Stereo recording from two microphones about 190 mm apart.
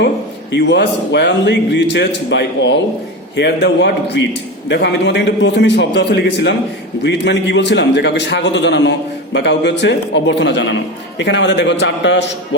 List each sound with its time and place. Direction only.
0.5 s a man's voice: 65° left (ahead or behind)